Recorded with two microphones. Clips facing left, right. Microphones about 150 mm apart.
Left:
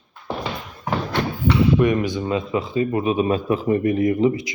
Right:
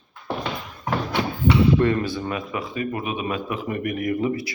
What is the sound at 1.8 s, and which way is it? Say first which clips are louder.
A man's voice: left 2 dB; 15° left (ahead or behind).